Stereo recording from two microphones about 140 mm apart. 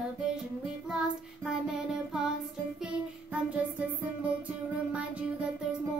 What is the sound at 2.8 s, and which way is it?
Music, 10° right (ahead or behind).